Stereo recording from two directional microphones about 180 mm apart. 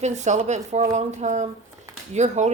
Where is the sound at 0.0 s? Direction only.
40° right (ahead or behind).